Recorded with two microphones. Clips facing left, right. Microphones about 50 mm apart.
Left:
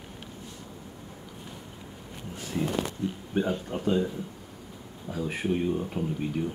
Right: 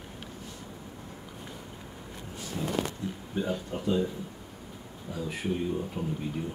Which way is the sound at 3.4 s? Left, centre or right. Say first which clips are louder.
Left 2 dB; left.